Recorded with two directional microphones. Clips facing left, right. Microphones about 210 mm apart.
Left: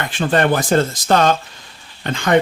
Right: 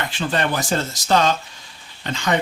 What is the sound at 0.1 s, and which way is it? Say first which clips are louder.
Speech: left 10 dB; 55° left (ahead or behind).